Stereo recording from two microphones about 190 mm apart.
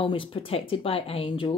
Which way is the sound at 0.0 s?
25° left (ahead or behind).